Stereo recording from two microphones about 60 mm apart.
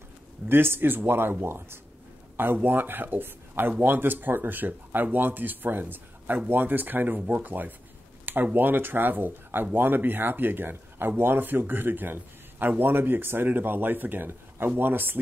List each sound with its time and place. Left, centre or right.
0.5 s speech: right